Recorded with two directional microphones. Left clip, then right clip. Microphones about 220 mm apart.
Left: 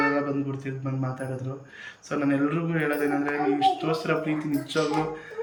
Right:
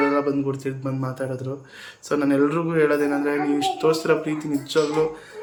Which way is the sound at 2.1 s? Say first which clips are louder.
Right 5 dB; 15° right (ahead or behind).